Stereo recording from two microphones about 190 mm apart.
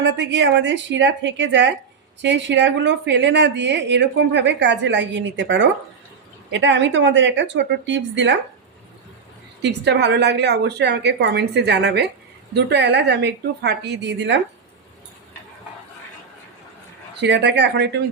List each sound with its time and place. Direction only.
0.0 s a woman's voice: 70° right (ahead or behind)
9.6 s a woman's voice: 65° right (ahead or behind)
17.2 s a woman's voice: 65° right (ahead or behind)